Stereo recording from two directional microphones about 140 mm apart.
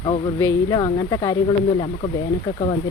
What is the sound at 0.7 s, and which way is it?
Speech, 30° left (ahead or behind).